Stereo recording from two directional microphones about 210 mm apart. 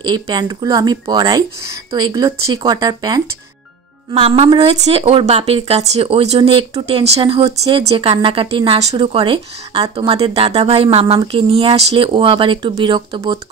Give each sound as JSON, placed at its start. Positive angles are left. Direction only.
{"t": 0.0, "sound": "a woman's voice", "side_deg": -20}